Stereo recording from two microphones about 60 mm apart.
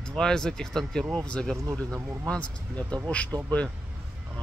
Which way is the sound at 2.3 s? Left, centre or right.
Centre.